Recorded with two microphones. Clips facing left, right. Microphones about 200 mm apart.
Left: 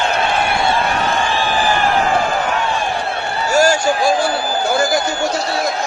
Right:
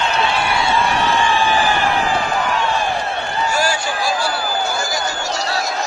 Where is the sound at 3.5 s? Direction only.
45° left (ahead or behind).